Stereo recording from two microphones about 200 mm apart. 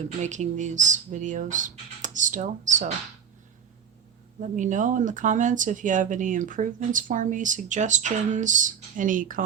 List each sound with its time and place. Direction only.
0.2 s speech: 35° right (ahead or behind)
4.4 s speech: 35° right (ahead or behind)